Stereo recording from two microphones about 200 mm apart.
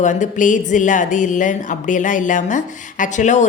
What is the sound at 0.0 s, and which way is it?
Speech, 40° left (ahead or behind).